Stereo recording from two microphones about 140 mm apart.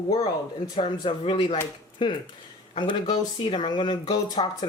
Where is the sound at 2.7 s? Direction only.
35° left (ahead or behind).